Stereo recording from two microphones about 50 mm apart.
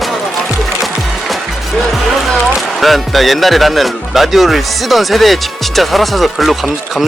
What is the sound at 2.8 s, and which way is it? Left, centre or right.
Speech, centre.